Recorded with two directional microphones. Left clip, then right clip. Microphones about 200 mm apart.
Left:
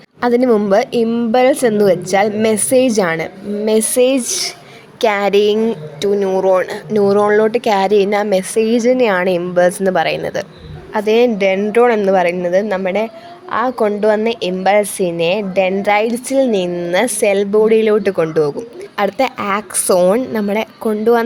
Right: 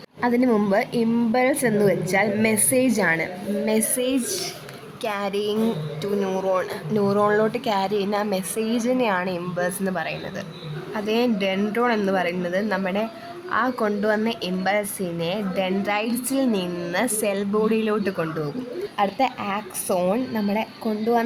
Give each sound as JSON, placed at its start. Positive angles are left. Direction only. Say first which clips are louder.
{"t": 0.2, "sound": "a woman's voice", "louder": "left 8 dB", "side_deg": 30}
{"t": 6.1, "sound": "speech", "louder": "left 8 dB", "side_deg": 20}
{"t": 6.6, "sound": "a woman's voice", "louder": "left 9 dB", "side_deg": 30}
{"t": 18.9, "sound": "a woman's voice", "louder": "left 7 dB", "side_deg": 40}